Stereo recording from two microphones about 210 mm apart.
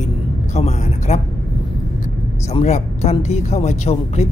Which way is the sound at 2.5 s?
30° left (ahead or behind).